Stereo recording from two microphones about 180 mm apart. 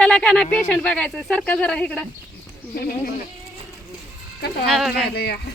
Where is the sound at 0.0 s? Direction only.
5° left (ahead or behind).